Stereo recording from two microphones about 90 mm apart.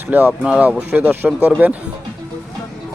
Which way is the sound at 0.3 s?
10° right (ahead or behind).